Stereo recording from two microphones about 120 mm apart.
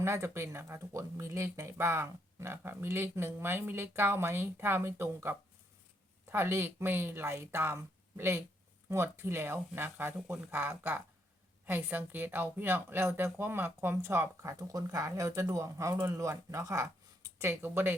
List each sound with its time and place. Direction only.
0.0 s speech: 20° right (ahead or behind)